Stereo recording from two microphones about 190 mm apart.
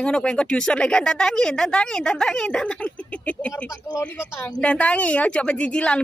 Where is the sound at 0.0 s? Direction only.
5° left (ahead or behind).